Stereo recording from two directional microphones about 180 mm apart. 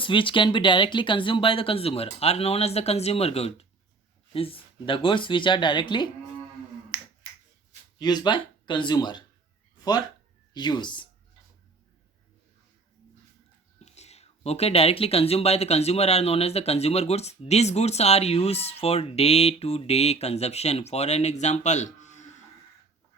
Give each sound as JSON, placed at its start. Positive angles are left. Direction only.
{"t": 0.0, "sound": "speech", "side_deg": 30}
{"t": 6.9, "sound": "finger snapping", "side_deg": -10}
{"t": 7.9, "sound": "speech", "side_deg": 25}
{"t": 10.5, "sound": "speech", "side_deg": 25}
{"t": 13.7, "sound": "speech", "side_deg": 35}